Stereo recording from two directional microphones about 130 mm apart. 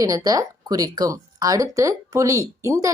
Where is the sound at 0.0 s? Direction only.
25° right (ahead or behind).